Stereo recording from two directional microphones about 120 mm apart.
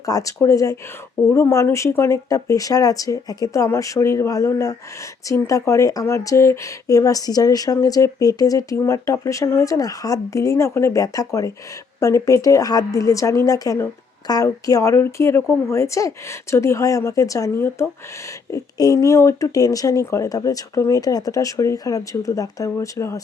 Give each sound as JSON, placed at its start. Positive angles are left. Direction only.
{"t": 0.0, "sound": "speech", "side_deg": 30}